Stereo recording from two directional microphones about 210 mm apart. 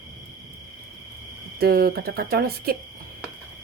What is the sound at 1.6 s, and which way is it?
A woman's voice, 45° right (ahead or behind).